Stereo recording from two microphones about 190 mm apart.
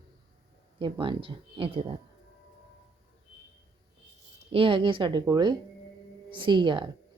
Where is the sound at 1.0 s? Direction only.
25° right (ahead or behind).